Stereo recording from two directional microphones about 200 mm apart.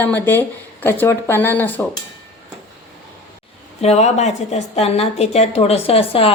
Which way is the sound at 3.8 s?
35° left (ahead or behind).